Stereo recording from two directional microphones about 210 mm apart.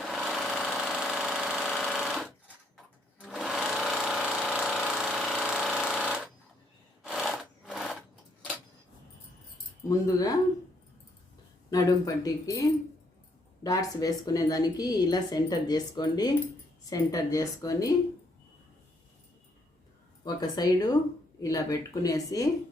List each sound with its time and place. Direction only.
0.0 s a sound: centre (ahead or behind)
2.7 s sewing machine: centre (ahead or behind)
10.1 s speech: 15° left (ahead or behind)
11.7 s speech: 15° left (ahead or behind)
13.7 s a woman's voice: 15° left (ahead or behind)
20.2 s a woman's voice: 20° left (ahead or behind)